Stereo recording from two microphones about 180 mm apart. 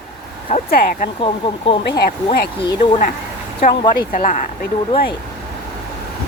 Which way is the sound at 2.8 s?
50° left (ahead or behind).